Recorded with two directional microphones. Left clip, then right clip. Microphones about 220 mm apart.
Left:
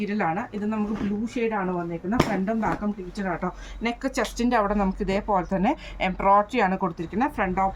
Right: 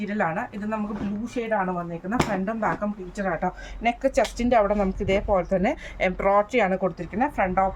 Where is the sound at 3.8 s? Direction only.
20° right (ahead or behind).